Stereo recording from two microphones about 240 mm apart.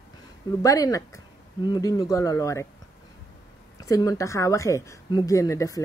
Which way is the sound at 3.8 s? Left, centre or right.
Centre.